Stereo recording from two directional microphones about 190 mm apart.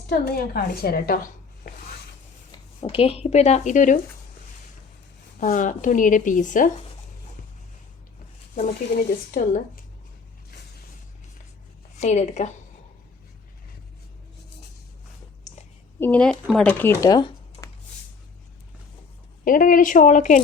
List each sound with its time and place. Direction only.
0.1 s speech: 55° left (ahead or behind)
2.8 s speech: 30° left (ahead or behind)
5.4 s speech: 45° left (ahead or behind)
8.5 s speech: 45° left (ahead or behind)
11.9 s speech: 35° left (ahead or behind)
15.5 s a sound: 40° left (ahead or behind)
16.0 s speech: 10° left (ahead or behind)
17.0 s a sound: 20° left (ahead or behind)
19.5 s speech: 45° left (ahead or behind)